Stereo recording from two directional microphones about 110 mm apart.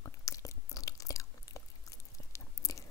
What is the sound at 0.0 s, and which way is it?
Biting, 30° left (ahead or behind).